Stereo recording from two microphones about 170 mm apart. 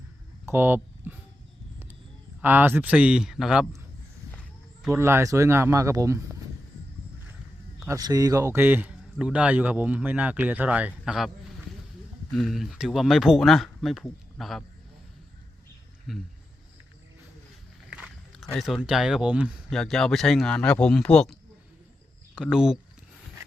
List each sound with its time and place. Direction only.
0.4 s speech: 10° right (ahead or behind)
2.4 s a man's voice: 10° right (ahead or behind)
4.3 s a sound: 10° left (ahead or behind)
4.9 s a man's voice: 15° right (ahead or behind)
7.8 s a man's voice: 20° right (ahead or behind)
12.3 s speech: centre (ahead or behind)
16.1 s speech: centre (ahead or behind)
17.9 s speech: centre (ahead or behind)
22.4 s speech: 5° right (ahead or behind)